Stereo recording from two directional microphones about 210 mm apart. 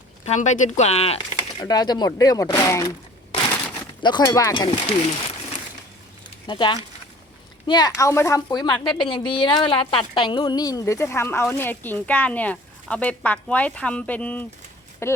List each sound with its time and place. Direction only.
0.3 s speech: 35° left (ahead or behind)
1.6 s a woman's voice: 20° left (ahead or behind)
4.0 s speech: 20° left (ahead or behind)
6.5 s a woman's voice: 20° left (ahead or behind)